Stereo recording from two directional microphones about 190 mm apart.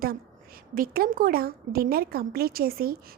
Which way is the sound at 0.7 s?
50° right (ahead or behind).